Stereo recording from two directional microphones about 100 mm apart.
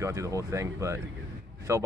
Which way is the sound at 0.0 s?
30° right (ahead or behind).